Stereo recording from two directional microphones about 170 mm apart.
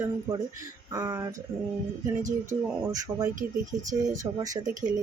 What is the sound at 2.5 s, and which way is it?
Speech, 15° right (ahead or behind).